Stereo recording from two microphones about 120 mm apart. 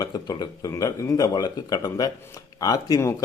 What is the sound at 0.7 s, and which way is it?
Speech, 25° left (ahead or behind).